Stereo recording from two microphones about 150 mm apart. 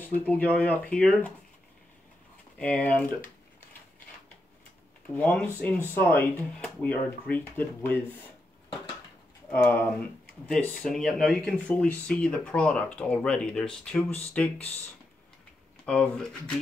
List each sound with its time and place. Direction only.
0.0 s speech: 10° left (ahead or behind)
2.6 s speech: 10° left (ahead or behind)
5.1 s speech: 10° left (ahead or behind)
9.5 s speech: 10° left (ahead or behind)
15.8 s speech: 5° left (ahead or behind)